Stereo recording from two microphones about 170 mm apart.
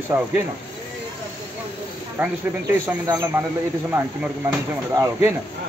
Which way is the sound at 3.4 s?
10° right (ahead or behind).